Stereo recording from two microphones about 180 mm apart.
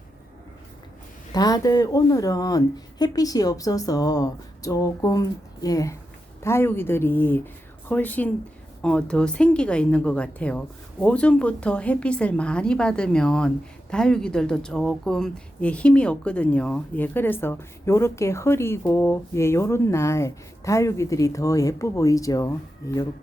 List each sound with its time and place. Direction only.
1.3 s a woman's voice: 20° left (ahead or behind)